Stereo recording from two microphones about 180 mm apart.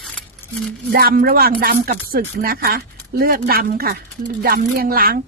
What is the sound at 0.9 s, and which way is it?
Speech, 55° right (ahead or behind).